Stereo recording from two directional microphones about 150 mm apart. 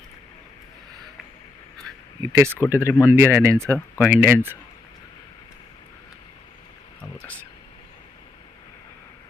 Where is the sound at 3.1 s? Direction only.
15° right (ahead or behind).